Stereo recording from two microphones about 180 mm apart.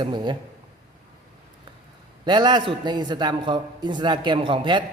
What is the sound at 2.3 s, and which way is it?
Speech, 25° right (ahead or behind).